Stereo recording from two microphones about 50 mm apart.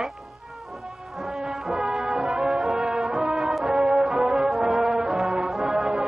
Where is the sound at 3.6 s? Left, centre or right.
Centre.